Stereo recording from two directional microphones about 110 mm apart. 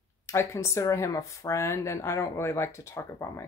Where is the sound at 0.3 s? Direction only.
25° left (ahead or behind).